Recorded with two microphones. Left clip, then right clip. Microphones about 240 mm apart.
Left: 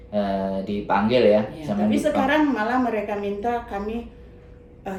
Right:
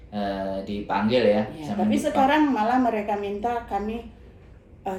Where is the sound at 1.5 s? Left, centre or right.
Centre.